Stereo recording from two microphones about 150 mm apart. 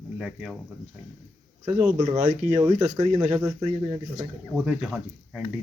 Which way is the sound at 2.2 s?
50° right (ahead or behind).